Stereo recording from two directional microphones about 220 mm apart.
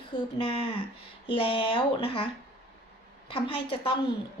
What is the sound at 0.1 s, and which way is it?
Speech, 35° left (ahead or behind).